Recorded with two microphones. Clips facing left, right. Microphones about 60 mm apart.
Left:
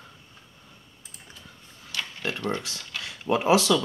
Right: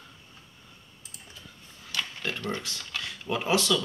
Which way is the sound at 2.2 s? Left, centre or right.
Centre.